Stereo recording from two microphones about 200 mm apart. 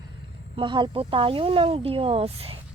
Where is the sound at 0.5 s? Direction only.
25° right (ahead or behind).